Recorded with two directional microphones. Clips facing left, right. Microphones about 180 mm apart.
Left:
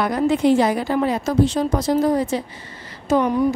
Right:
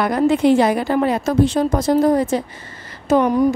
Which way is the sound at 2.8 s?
50° right (ahead or behind).